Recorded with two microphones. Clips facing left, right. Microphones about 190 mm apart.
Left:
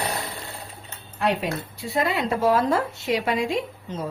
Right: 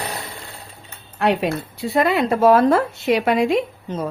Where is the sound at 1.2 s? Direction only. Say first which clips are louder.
Right 5 dB; 70° right (ahead or behind).